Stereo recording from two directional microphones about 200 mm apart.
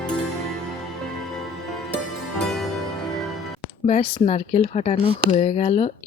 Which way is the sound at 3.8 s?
30° left (ahead or behind).